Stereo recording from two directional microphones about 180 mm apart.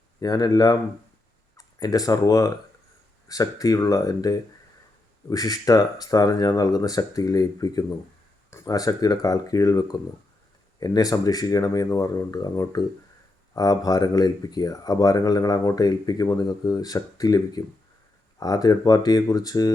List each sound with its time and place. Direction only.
0.2 s speech: 20° left (ahead or behind)